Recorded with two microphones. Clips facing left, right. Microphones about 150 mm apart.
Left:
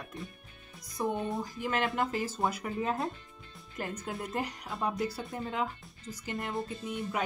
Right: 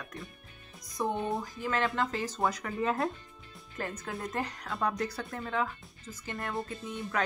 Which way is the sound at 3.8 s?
10° left (ahead or behind).